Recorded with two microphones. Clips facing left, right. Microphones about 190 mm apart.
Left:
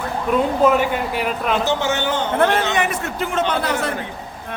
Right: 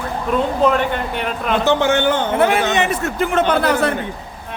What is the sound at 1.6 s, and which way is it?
Speech, 60° right (ahead or behind).